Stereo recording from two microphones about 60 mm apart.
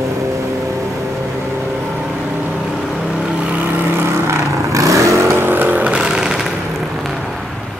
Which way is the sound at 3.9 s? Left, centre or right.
Right.